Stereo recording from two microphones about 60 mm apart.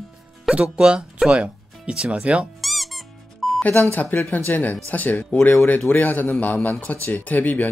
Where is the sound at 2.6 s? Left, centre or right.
Centre.